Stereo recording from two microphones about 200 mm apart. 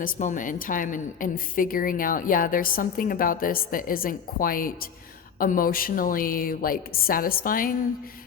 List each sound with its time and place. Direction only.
0.0 s a woman's voice: 40° left (ahead or behind)